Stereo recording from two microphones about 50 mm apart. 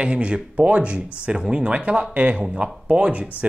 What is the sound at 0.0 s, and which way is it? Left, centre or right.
Speech, right.